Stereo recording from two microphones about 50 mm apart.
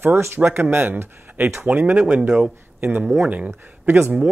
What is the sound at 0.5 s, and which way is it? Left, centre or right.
Speech, right.